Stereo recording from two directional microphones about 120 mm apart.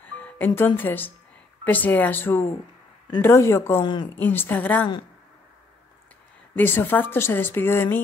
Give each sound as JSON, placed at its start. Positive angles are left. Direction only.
{"t": 0.0, "sound": "music", "side_deg": 15}
{"t": 0.6, "sound": "a woman's voice", "side_deg": 15}
{"t": 3.8, "sound": "speech", "side_deg": 40}
{"t": 4.2, "sound": "a woman's voice", "side_deg": 15}
{"t": 6.5, "sound": "a woman's voice", "side_deg": 15}